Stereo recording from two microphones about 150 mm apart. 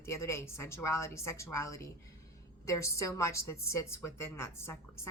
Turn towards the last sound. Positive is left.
turn(degrees=15)  # may be behind; listen again after turning